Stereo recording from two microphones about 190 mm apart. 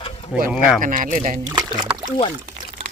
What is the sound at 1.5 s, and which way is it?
Speech, 25° right (ahead or behind).